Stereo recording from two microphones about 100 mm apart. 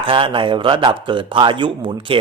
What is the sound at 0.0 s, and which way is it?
Speech, 60° right (ahead or behind).